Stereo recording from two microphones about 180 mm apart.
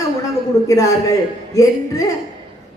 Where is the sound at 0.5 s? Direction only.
15° left (ahead or behind).